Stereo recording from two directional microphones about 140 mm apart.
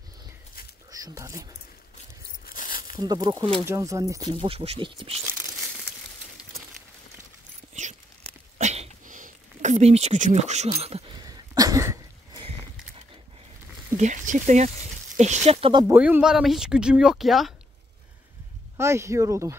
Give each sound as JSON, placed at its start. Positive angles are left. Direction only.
{"t": 0.9, "sound": "speech", "side_deg": -25}
{"t": 2.4, "sound": "tearing", "side_deg": 85}
{"t": 3.0, "sound": "speech", "side_deg": -30}
{"t": 4.3, "sound": "speech", "side_deg": -40}
{"t": 7.8, "sound": "a sound", "side_deg": -60}
{"t": 11.2, "sound": "a sound", "side_deg": -25}
{"t": 12.4, "sound": "a sound", "side_deg": -40}
{"t": 13.9, "sound": "speech", "side_deg": -60}
{"t": 15.9, "sound": "speech", "side_deg": -10}
{"t": 18.8, "sound": "speech", "side_deg": -20}